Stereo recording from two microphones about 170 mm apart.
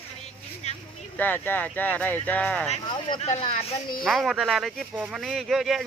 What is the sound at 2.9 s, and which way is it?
Speech, 30° left (ahead or behind).